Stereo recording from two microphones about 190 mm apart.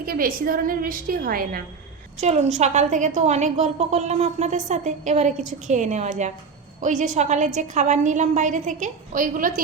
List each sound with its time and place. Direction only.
0.0 s a woman's voice: 50° right (ahead or behind)
2.2 s a woman's voice: 35° right (ahead or behind)